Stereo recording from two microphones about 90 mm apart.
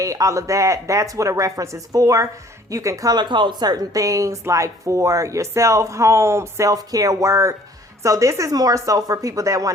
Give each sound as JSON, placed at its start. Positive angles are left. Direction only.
{"t": 0.0, "sound": "a woman's voice", "side_deg": -40}
{"t": 3.2, "sound": "a woman's voice", "side_deg": -60}